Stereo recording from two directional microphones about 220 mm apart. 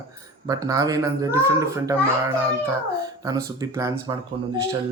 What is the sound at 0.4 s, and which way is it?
Speech, 15° right (ahead or behind).